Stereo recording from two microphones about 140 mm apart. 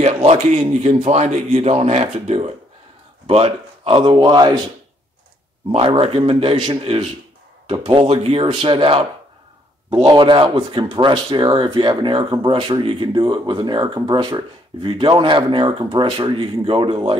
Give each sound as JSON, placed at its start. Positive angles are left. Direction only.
{"t": 0.0, "sound": "a sound", "side_deg": -50}
{"t": 0.8, "sound": "speech", "side_deg": -50}
{"t": 5.7, "sound": "speech", "side_deg": -45}